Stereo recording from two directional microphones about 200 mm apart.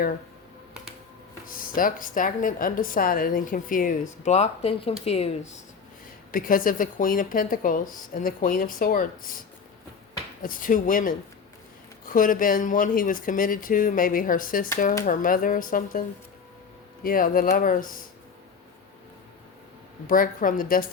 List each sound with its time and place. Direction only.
1.5 s a woman's voice: 45° left (ahead or behind)
6.3 s a woman's voice: 45° left (ahead or behind)
10.4 s a woman's voice: 40° left (ahead or behind)
20.1 s a woman's voice: 45° left (ahead or behind)